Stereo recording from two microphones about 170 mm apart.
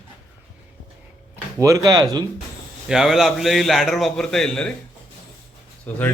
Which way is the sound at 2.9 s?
Centre (ahead or behind).